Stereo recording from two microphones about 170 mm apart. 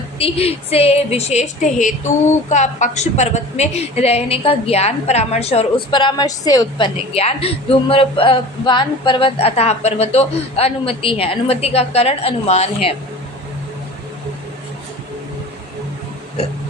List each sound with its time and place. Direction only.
0.2 s a woman's voice: 35° left (ahead or behind)